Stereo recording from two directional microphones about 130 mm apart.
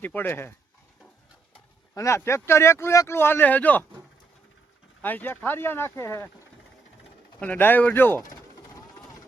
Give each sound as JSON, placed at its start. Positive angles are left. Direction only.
{"t": 0.0, "sound": "speech", "side_deg": 15}
{"t": 2.0, "sound": "speech", "side_deg": 20}
{"t": 5.0, "sound": "speech", "side_deg": 15}
{"t": 7.3, "sound": "speech", "side_deg": 10}
{"t": 8.3, "sound": "vehicle", "side_deg": 20}